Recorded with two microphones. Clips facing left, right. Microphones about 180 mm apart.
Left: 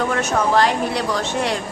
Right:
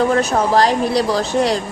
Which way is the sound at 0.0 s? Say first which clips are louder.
Right 4 dB; 35° right (ahead or behind).